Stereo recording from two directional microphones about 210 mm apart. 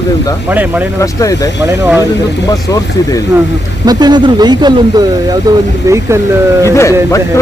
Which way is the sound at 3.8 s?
20° right (ahead or behind).